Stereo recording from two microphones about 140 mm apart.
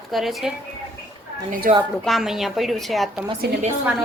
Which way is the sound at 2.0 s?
Centre (ahead or behind).